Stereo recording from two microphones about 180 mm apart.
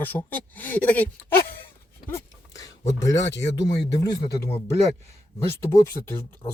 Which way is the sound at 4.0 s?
20° left (ahead or behind).